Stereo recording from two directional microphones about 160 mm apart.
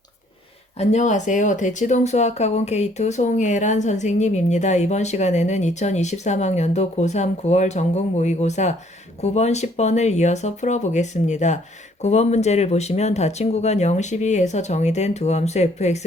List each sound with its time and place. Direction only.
0.8 s speech: 45° left (ahead or behind)